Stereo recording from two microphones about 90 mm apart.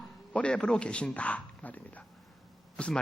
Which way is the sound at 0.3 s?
10° left (ahead or behind).